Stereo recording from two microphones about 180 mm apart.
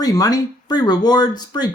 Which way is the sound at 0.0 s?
20° left (ahead or behind).